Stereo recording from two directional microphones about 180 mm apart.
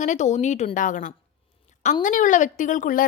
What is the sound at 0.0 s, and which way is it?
A woman's voice, 40° left (ahead or behind).